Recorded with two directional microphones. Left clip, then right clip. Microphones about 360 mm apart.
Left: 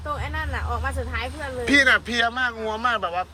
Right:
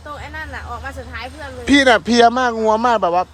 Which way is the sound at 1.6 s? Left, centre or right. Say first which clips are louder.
Right 5 dB; centre.